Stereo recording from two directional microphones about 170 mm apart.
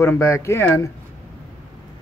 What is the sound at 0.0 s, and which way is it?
Speech, 15° left (ahead or behind).